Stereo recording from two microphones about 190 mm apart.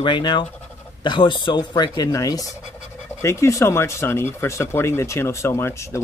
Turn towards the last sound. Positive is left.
turn(degrees=15)  # may be behind; listen again after turning